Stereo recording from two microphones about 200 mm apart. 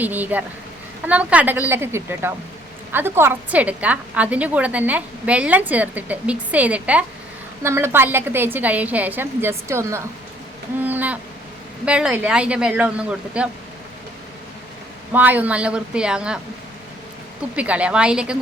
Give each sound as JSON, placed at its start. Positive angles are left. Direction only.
{"t": 0.0, "sound": "a woman's voice", "side_deg": -10}
{"t": 10.8, "sound": "owl", "side_deg": -10}
{"t": 11.9, "sound": "speech", "side_deg": -5}
{"t": 15.1, "sound": "speech", "side_deg": -10}
{"t": 17.5, "sound": "speech", "side_deg": -5}